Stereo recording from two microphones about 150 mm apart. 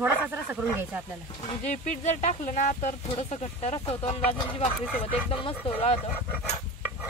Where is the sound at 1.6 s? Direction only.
50° left (ahead or behind).